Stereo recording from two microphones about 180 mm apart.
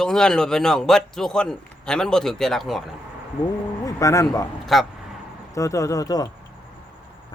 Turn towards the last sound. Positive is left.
turn(degrees=20)  # may be behind; listen again after turning